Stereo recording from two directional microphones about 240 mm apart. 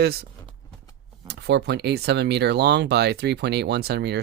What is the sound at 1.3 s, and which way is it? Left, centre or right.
Speech, right.